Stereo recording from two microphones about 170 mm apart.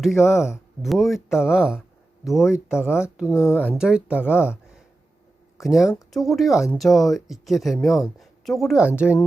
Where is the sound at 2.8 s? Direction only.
15° left (ahead or behind).